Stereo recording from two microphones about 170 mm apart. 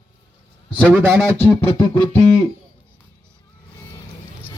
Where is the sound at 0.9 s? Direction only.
10° right (ahead or behind).